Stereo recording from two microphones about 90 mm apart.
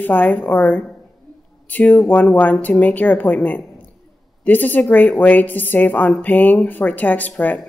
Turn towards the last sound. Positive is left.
turn(degrees=20)  # may be behind; listen again after turning